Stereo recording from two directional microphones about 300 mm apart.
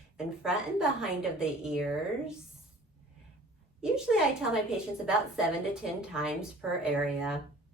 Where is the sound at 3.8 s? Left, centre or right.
Centre.